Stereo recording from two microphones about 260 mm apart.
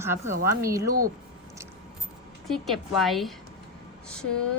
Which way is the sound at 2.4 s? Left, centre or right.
Centre.